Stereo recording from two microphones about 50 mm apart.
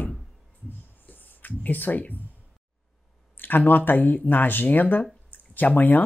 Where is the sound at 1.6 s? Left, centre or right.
Left.